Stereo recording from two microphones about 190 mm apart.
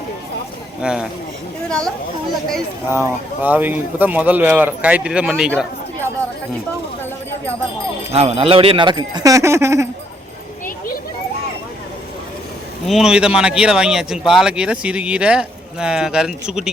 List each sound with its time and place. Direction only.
0.8 s speech: 5° right (ahead or behind)
2.9 s speech: 10° right (ahead or behind)
8.1 s speech: 30° right (ahead or behind); by 9.9 s 15° right (ahead or behind)
12.9 s speech: 5° right (ahead or behind)